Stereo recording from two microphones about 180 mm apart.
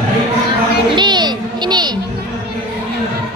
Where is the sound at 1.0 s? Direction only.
25° right (ahead or behind).